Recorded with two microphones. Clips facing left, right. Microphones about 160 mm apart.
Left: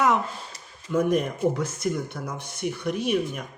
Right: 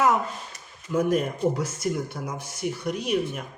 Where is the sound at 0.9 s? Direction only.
5° right (ahead or behind).